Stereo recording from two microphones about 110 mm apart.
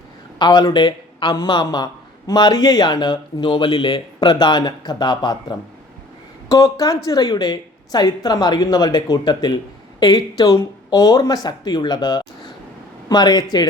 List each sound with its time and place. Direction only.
0.3 s a woman's voice: 40° left (ahead or behind)